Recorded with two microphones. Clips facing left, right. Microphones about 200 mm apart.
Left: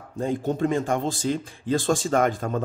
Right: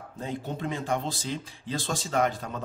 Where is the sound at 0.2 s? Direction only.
45° left (ahead or behind).